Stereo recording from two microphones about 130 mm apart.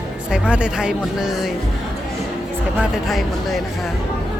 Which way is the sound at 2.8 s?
Centre (ahead or behind).